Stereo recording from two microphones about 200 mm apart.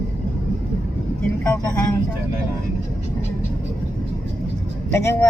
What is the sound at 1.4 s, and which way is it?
Vehicle, 10° left (ahead or behind).